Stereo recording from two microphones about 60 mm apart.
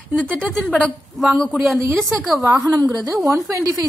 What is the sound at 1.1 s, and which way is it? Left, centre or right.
A woman's voice, centre.